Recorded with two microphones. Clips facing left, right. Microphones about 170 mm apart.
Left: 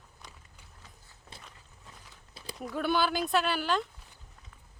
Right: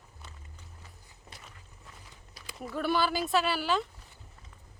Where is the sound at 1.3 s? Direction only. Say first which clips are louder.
Left 1 dB; 25° left (ahead or behind).